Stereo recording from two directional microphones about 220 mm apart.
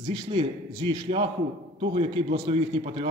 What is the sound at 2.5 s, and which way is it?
Speech, 25° right (ahead or behind).